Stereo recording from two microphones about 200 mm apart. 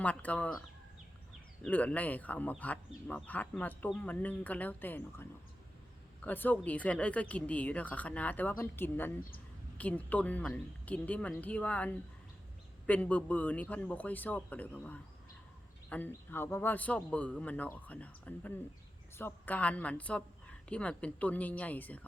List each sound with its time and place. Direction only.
0.0 s speech: 5° left (ahead or behind)
1.6 s speech: 5° left (ahead or behind)
6.2 s speech: 10° left (ahead or behind)